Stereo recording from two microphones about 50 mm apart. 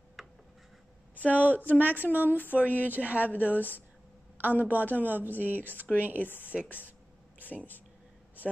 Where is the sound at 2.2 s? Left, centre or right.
Left.